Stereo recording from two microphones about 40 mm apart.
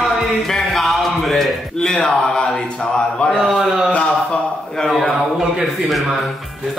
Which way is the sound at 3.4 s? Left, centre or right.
Centre.